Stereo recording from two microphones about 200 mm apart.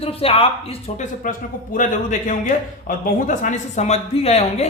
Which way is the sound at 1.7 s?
40° left (ahead or behind).